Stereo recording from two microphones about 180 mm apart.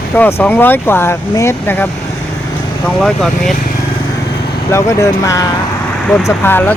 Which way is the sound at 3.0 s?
Centre (ahead or behind).